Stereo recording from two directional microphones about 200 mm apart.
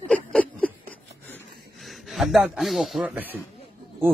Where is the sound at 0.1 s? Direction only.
5° left (ahead or behind).